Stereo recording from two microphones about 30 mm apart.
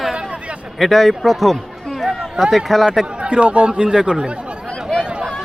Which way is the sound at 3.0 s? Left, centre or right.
Right.